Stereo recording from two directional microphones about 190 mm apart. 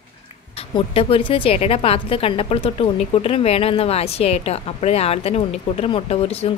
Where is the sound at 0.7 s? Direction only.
30° left (ahead or behind).